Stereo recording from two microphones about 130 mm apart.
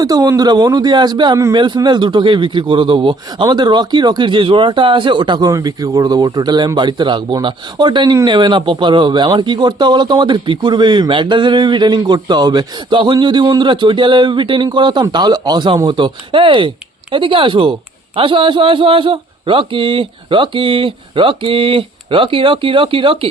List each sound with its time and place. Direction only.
0.0 s speech: 30° right (ahead or behind)